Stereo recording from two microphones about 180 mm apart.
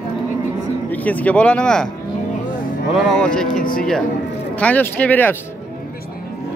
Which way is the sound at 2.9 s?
5° left (ahead or behind).